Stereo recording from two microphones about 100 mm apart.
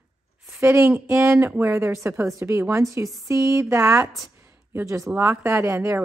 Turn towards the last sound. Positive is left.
turn(degrees=-25)  # may be behind; listen again after turning